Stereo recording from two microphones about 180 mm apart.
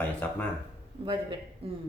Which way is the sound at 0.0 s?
10° left (ahead or behind).